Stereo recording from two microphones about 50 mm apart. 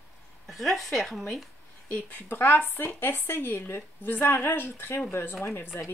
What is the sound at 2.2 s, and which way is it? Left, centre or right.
A woman's voice, left.